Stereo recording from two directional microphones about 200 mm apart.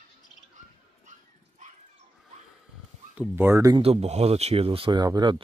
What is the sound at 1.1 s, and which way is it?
Dog, 40° right (ahead or behind).